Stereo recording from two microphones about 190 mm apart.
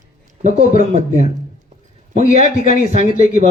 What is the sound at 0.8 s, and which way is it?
A man's voice, 45° left (ahead or behind).